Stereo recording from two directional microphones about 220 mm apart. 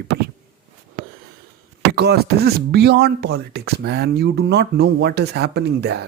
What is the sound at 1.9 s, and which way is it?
Speech, 45° right (ahead or behind).